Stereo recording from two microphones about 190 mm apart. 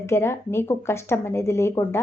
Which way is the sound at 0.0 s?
15° left (ahead or behind).